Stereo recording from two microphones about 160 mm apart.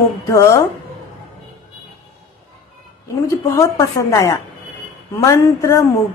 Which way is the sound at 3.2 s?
20° left (ahead or behind).